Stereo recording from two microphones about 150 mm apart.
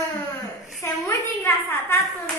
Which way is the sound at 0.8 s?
20° left (ahead or behind).